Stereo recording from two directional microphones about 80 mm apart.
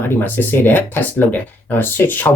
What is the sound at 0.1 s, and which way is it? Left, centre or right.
Speech, left.